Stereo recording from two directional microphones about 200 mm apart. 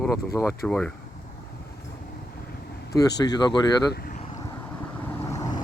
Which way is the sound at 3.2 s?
20° left (ahead or behind).